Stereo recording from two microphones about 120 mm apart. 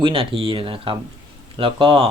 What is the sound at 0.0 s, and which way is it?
Speech, 50° right (ahead or behind).